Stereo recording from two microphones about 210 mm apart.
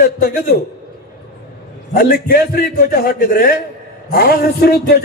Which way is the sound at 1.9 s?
50° left (ahead or behind).